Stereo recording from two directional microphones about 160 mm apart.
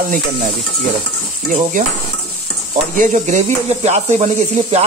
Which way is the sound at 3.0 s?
50° right (ahead or behind).